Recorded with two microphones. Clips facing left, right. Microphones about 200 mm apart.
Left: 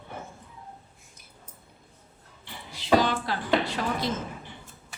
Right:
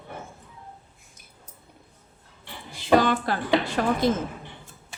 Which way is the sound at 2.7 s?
55° right (ahead or behind).